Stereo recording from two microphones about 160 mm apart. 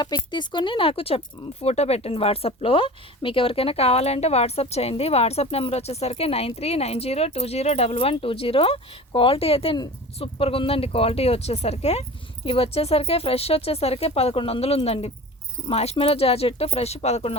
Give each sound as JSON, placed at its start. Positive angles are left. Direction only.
{"t": 0.0, "sound": "speech", "side_deg": 25}